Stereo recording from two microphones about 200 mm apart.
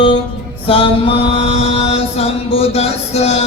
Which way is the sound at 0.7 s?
30° left (ahead or behind).